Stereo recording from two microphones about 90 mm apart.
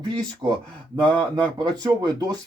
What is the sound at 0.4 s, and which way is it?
Speech, 45° right (ahead or behind).